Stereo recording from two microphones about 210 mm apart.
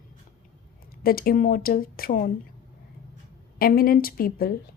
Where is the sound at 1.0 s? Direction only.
45° left (ahead or behind).